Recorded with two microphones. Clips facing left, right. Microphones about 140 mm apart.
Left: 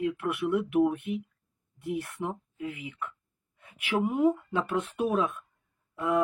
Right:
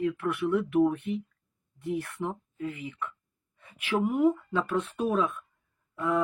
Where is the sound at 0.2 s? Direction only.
10° left (ahead or behind).